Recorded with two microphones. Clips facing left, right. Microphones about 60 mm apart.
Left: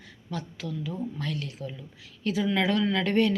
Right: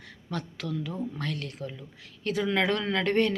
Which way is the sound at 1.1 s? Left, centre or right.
Right.